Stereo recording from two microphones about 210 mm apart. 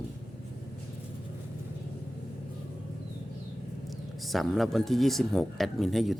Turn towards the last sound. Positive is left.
turn(degrees=0)  # may be behind; listen again after turning